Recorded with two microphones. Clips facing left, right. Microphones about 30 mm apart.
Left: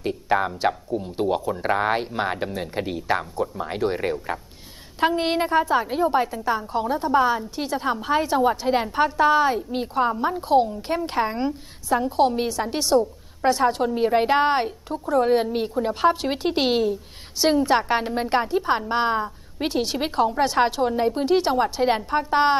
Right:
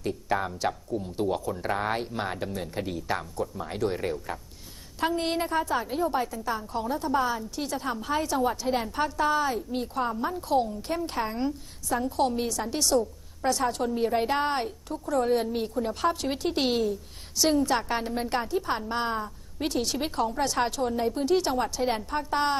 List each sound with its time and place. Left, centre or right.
0.0 s a woman's voice: left